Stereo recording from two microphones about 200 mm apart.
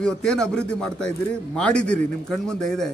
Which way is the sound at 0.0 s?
5° left (ahead or behind).